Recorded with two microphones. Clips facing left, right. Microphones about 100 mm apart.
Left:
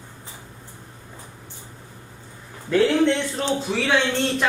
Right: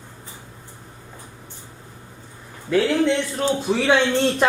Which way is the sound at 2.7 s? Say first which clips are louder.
Even; 5° right (ahead or behind).